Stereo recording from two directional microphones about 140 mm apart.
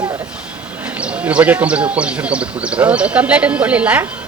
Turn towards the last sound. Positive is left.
turn(degrees=-10)  # may be behind; listen again after turning